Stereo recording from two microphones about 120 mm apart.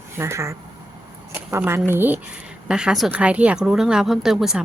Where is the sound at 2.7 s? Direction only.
5° right (ahead or behind).